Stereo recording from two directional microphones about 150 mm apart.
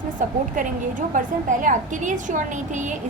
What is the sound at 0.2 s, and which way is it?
A woman's voice, 60° right (ahead or behind).